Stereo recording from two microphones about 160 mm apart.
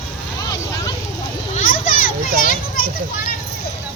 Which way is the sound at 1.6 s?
55° left (ahead or behind).